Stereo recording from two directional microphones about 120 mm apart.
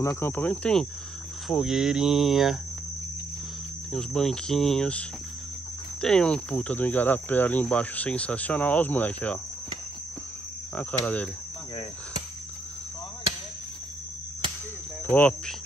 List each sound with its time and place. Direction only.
0.0 s speech: 20° left (ahead or behind)
1.5 s cricket: 5° right (ahead or behind)
3.9 s cricket: 5° left (ahead or behind)
5.9 s speech: 5° left (ahead or behind)
10.7 s cricket: 15° left (ahead or behind)
15.0 s speech: 15° left (ahead or behind)